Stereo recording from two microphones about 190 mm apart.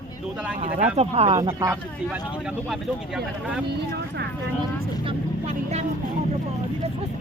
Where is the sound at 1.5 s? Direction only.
15° right (ahead or behind).